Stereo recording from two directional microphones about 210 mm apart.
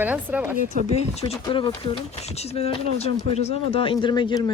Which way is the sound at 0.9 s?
30° left (ahead or behind).